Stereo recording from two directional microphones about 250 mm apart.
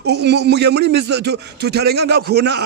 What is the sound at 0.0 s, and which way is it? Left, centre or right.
Speech, right.